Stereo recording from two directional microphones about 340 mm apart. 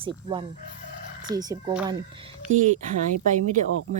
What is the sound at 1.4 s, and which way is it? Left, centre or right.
Speech, centre.